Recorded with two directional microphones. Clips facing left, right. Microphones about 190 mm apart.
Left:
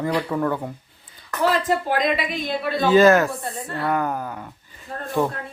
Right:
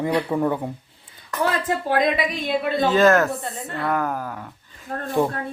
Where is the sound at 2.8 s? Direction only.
Centre (ahead or behind).